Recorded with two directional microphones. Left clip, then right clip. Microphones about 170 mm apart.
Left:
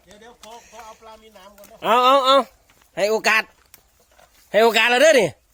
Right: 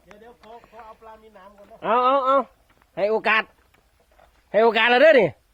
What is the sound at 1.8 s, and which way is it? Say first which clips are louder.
Speech: left 4 dB; 25° left (ahead or behind).